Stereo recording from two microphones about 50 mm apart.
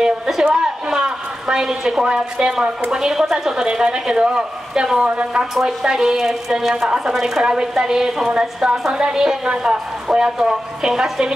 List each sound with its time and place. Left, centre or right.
0.0 s a woman's voice: centre